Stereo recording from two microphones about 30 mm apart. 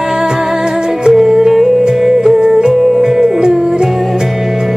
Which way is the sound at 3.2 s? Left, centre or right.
Right.